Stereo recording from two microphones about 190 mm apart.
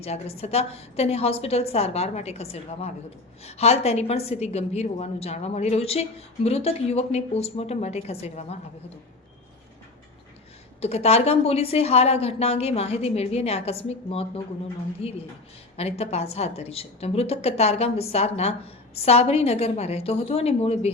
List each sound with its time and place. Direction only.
0.0 s a woman's voice: 30° left (ahead or behind)
10.8 s a woman's voice: 35° left (ahead or behind)